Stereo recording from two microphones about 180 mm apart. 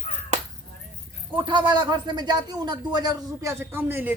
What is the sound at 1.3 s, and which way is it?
A man's voice, 30° right (ahead or behind).